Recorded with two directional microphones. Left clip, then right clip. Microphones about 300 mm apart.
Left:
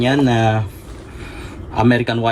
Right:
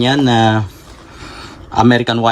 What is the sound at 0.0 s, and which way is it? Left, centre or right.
Speech, centre.